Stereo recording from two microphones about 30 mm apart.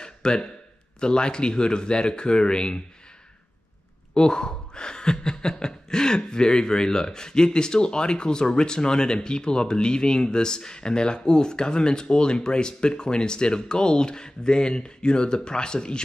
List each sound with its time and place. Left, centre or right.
0.0 s a sound: left
1.0 s speech: left
4.1 s speech: left